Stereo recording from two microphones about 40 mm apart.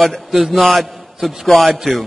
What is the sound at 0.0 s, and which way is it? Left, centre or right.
A man's voice, centre.